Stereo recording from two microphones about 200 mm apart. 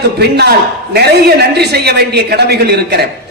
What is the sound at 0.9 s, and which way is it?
A man's voice, 55° right (ahead or behind).